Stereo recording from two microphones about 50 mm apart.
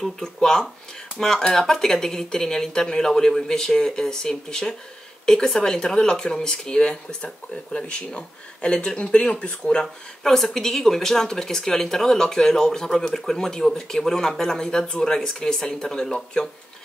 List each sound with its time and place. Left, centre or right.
0.0 s speech: centre
10.3 s speech: centre